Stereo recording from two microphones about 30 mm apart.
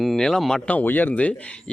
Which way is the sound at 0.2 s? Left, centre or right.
Centre.